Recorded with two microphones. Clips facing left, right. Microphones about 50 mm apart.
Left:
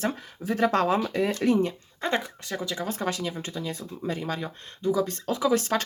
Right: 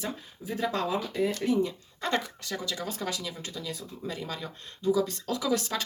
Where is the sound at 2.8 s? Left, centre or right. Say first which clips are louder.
Left 5 dB; left.